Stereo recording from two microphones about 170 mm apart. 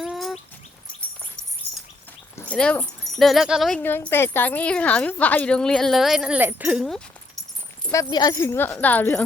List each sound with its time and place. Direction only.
0.0 s bird: centre (ahead or behind)
2.3 s speech: 10° left (ahead or behind)
3.8 s speech: 10° left (ahead or behind)
7.9 s speech: 20° left (ahead or behind)